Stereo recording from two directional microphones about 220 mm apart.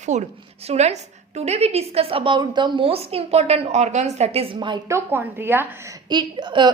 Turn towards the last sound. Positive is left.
turn(degrees=-20)  # may be behind; listen again after turning